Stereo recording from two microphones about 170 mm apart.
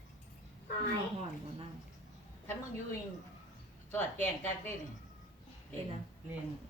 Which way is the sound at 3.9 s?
10° left (ahead or behind).